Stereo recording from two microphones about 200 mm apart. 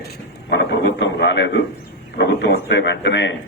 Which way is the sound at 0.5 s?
60° left (ahead or behind).